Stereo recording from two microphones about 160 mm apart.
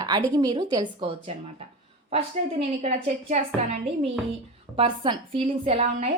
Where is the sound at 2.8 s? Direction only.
40° right (ahead or behind).